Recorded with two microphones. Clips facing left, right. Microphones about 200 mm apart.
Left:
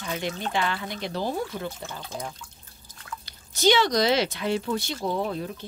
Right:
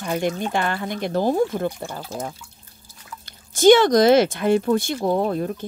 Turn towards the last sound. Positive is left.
turn(degrees=-50)  # may be behind; listen again after turning